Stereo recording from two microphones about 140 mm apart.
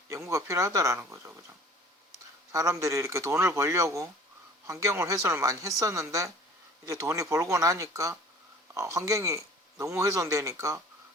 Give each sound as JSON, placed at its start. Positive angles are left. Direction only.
{"t": 0.1, "sound": "speech", "side_deg": -20}
{"t": 2.5, "sound": "speech", "side_deg": -20}